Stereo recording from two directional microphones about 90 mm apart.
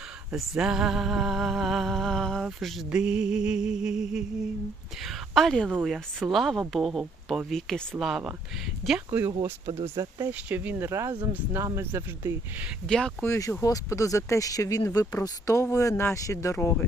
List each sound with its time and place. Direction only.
0.3 s music: 5° right (ahead or behind)
2.9 s a sound: 10° right (ahead or behind)
5.8 s music: centre (ahead or behind)
9.4 s speech: 40° right (ahead or behind)
10.3 s speech: 15° right (ahead or behind)
10.8 s speech: 35° right (ahead or behind)
11.1 s speech: 20° right (ahead or behind)
12.9 s speech: 5° left (ahead or behind)
13.2 s speech: 30° left (ahead or behind)